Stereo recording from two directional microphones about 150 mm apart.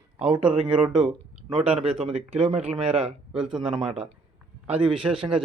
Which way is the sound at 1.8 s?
40° right (ahead or behind).